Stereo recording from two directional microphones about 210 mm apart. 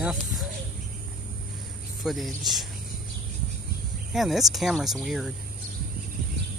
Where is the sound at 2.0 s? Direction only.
Centre (ahead or behind).